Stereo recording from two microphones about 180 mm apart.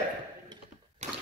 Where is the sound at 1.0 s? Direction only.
40° right (ahead or behind).